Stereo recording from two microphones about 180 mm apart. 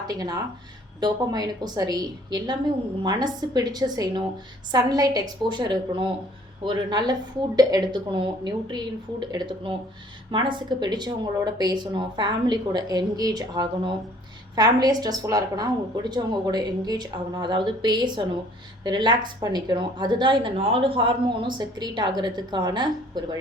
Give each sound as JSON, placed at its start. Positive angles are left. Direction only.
{"t": 0.1, "sound": "speech", "side_deg": -20}